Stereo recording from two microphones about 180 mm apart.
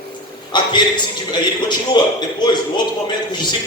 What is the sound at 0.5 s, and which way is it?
A man's voice, 25° left (ahead or behind).